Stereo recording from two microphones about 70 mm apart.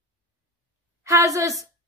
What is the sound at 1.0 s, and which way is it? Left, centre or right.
Speech, right.